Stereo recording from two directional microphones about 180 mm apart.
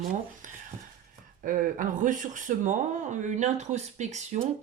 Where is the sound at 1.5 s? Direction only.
50° right (ahead or behind).